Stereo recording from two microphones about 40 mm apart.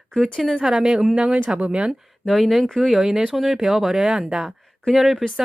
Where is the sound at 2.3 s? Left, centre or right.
Centre.